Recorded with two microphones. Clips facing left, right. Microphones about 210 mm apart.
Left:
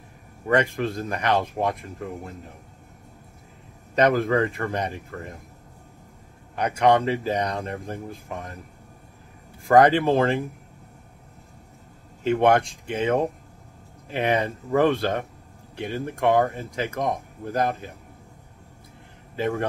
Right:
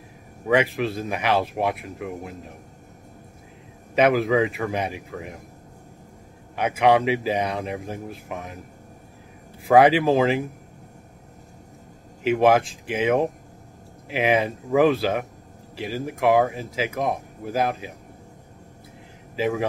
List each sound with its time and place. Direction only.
0.5 s speech: 5° right (ahead or behind)
3.9 s speech: 5° right (ahead or behind)
6.5 s speech: 5° right (ahead or behind)
9.7 s speech: 5° right (ahead or behind)
12.3 s speech: 5° right (ahead or behind)
19.3 s speech: 5° right (ahead or behind)